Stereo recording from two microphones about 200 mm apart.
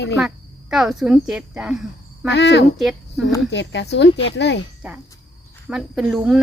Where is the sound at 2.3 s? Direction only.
60° left (ahead or behind).